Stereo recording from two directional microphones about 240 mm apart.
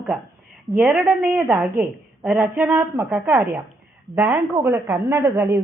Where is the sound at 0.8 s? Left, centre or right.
Centre.